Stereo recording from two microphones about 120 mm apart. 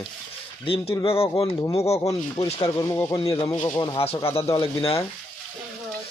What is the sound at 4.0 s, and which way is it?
Speech, 55° left (ahead or behind).